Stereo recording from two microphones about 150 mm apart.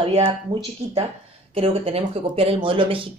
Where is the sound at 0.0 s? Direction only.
40° right (ahead or behind).